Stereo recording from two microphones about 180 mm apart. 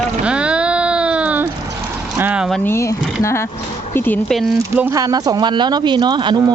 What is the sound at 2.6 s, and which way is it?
Speech, 15° left (ahead or behind).